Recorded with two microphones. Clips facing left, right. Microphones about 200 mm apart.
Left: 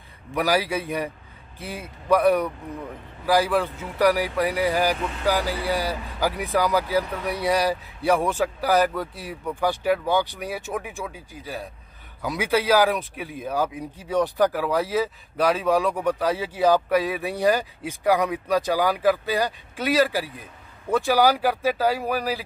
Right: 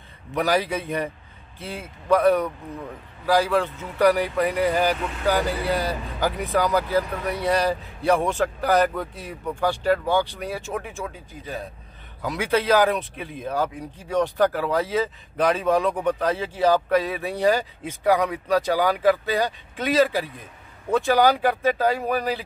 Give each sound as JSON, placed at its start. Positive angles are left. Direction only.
{"t": 0.3, "sound": "a man's voice", "side_deg": 10}